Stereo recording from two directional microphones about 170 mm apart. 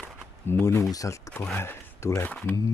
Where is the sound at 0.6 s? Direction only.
15° left (ahead or behind).